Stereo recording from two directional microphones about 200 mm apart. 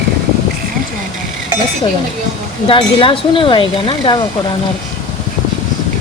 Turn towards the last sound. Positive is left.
turn(degrees=25)  # may be behind; listen again after turning